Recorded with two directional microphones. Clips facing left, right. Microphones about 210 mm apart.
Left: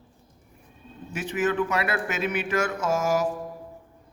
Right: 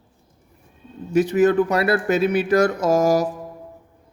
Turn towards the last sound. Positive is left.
turn(degrees=-40)  # may be behind; listen again after turning